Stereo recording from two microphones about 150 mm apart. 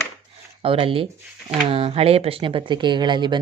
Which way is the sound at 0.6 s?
35° right (ahead or behind).